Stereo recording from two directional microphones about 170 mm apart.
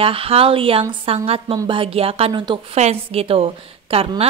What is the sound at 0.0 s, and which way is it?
A woman's voice, 35° right (ahead or behind).